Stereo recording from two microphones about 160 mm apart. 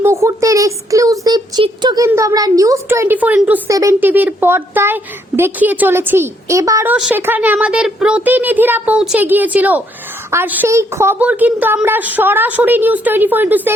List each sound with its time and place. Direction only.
0.0 s a woman's voice: 20° right (ahead or behind)
3.7 s a woman's voice: 20° right (ahead or behind)
6.9 s a woman's voice: 10° right (ahead or behind)